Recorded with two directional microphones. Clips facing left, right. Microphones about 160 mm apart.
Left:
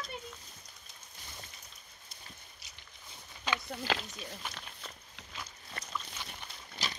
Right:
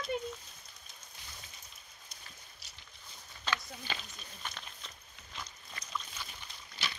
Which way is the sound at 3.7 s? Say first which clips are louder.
Left 8 dB; 80° left.